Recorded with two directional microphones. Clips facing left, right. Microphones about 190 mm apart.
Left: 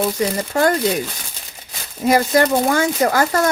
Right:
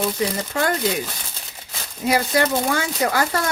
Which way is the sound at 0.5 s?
40° left (ahead or behind).